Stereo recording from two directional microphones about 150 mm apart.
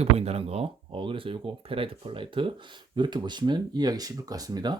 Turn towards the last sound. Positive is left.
turn(degrees=-25)  # may be behind; listen again after turning